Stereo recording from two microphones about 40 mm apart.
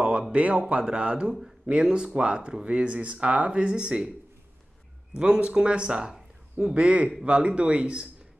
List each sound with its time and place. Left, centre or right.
0.3 s speech: right
3.7 s speech: centre
5.2 s speech: right